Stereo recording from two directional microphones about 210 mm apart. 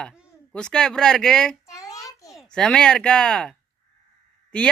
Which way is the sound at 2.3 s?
5° left (ahead or behind).